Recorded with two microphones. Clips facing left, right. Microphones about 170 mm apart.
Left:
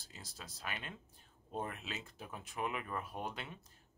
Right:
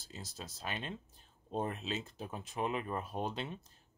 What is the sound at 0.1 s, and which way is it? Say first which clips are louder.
Speech: right 6 dB; 25° right (ahead or behind).